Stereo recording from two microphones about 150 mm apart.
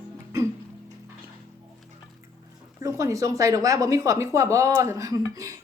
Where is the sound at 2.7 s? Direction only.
20° right (ahead or behind).